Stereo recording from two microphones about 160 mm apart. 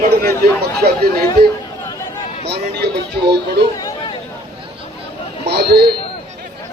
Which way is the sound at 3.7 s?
20° left (ahead or behind).